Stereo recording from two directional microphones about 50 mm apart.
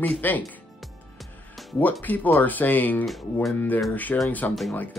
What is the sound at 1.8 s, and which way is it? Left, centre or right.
Speech, left.